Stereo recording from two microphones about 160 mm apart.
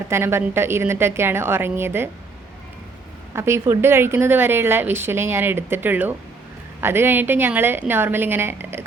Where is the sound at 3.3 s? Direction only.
15° right (ahead or behind).